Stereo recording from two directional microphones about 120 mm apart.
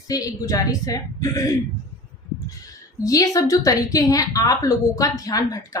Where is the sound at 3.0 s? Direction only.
30° left (ahead or behind).